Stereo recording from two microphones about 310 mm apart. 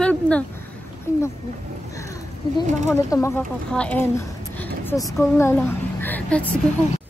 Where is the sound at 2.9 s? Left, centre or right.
Centre.